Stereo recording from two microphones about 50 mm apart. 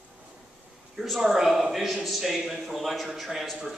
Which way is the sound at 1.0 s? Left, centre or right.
Centre.